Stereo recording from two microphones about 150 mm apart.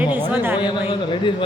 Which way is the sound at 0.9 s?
35° left (ahead or behind).